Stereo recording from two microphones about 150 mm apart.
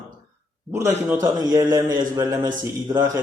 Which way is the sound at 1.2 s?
25° right (ahead or behind).